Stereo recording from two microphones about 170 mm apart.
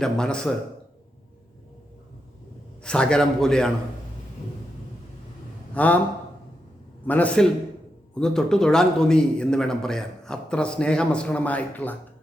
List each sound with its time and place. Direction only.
0.0 s a man's voice: 5° left (ahead or behind)
2.8 s a man's voice: 5° left (ahead or behind)
5.7 s a man's voice: 10° left (ahead or behind)
7.1 s a man's voice: 10° left (ahead or behind)